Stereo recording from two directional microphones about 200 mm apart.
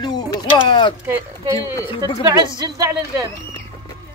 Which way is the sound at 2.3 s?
20° right (ahead or behind).